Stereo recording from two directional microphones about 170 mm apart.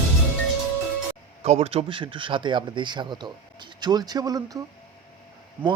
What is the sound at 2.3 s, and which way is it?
Speech, 25° right (ahead or behind).